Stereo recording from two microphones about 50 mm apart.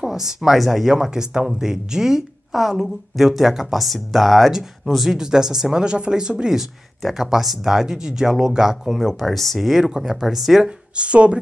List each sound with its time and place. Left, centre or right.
0.1 s speech: centre
5.1 s speech: centre
11.0 s speech: right